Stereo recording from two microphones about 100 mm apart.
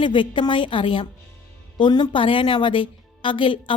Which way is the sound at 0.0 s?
50° left (ahead or behind).